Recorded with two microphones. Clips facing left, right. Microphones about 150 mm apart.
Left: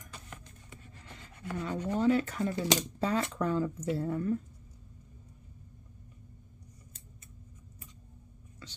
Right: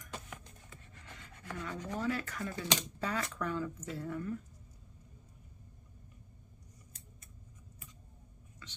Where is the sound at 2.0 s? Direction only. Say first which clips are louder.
Left 9 dB; 25° left (ahead or behind).